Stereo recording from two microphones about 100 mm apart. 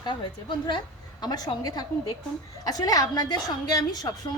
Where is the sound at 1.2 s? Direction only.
45° left (ahead or behind).